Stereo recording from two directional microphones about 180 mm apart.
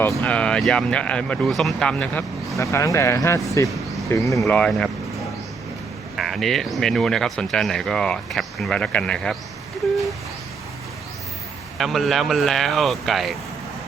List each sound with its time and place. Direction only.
0.2 s speech: 5° left (ahead or behind)
2.6 s speech: 15° left (ahead or behind)
4.4 s speech: 5° left (ahead or behind)
6.1 s speech: centre (ahead or behind)
11.8 s speech: centre (ahead or behind)